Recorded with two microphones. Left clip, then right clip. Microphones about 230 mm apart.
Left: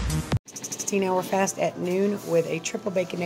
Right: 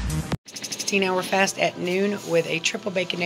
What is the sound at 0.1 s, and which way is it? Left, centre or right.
Music, centre.